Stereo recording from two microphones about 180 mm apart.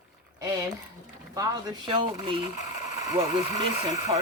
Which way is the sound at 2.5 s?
40° left (ahead or behind).